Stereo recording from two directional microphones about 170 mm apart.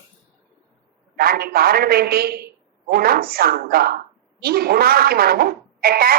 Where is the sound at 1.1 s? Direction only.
65° right (ahead or behind).